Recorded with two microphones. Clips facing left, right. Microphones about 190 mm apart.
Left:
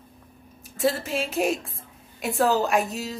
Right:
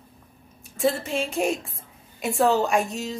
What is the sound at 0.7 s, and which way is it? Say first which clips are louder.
A woman's voice: right 1 dB; centre (ahead or behind).